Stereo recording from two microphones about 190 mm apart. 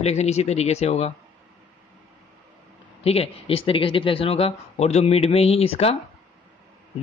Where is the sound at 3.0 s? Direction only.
30° left (ahead or behind).